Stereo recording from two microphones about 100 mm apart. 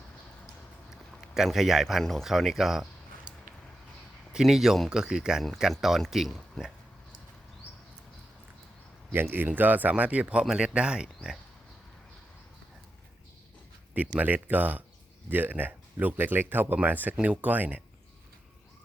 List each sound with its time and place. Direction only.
0.4 s speech: 5° right (ahead or behind)
4.3 s speech: 5° right (ahead or behind)
9.1 s speech: 20° right (ahead or behind); by 11.3 s 5° right (ahead or behind)
13.9 s speech: 15° right (ahead or behind)